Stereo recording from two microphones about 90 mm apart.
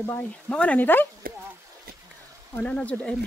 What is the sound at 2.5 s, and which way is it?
Speech, 15° left (ahead or behind).